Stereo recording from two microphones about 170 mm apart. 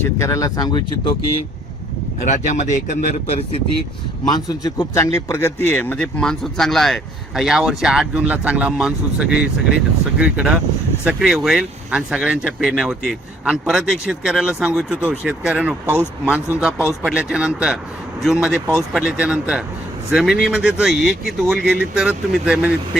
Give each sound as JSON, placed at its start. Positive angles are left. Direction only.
{"t": 0.0, "sound": "speech", "side_deg": 20}
{"t": 2.2, "sound": "speech", "side_deg": 45}
{"t": 4.3, "sound": "speech", "side_deg": 25}